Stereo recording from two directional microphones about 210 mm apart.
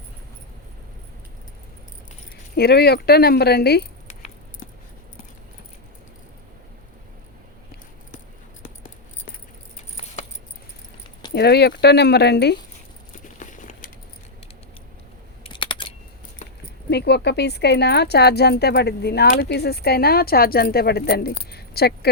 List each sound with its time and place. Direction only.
2.6 s a woman's voice: 50° left (ahead or behind)
9.7 s keys jangling: 30° left (ahead or behind)
11.3 s a woman's voice: 50° left (ahead or behind)
13.4 s keys jangling: 35° left (ahead or behind)
15.4 s typing: 20° left (ahead or behind)
16.4 s keys jangling: 35° left (ahead or behind)
16.9 s a woman's voice: 50° left (ahead or behind)